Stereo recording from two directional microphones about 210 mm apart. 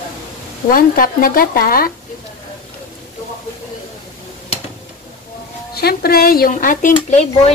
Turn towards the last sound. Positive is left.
turn(degrees=35)  # may be behind; listen again after turning